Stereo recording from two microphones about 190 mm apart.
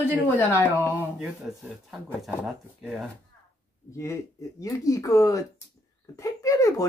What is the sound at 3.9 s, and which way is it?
A woman's voice, 15° left (ahead or behind).